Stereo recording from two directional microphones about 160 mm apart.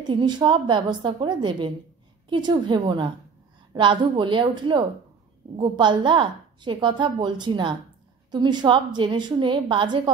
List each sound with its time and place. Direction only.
0.0 s a woman's voice: 25° right (ahead or behind)